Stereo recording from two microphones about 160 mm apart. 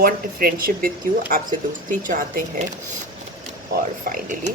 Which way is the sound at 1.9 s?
55° right (ahead or behind).